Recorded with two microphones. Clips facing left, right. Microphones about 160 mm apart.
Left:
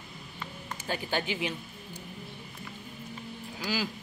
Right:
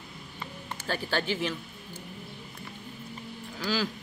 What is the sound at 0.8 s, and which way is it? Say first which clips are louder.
Speech: right 2 dB; 15° left (ahead or behind).